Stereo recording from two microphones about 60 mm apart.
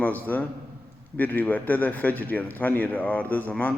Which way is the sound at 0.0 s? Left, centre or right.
Left.